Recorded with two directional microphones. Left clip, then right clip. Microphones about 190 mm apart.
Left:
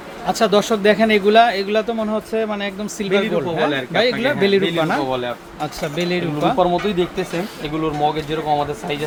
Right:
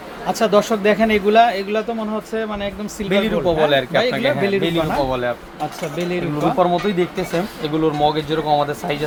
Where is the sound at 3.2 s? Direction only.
50° right (ahead or behind).